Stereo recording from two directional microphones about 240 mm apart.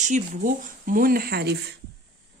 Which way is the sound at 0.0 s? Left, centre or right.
Right.